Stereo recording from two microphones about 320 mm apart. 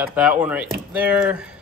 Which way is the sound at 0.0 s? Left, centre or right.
Centre.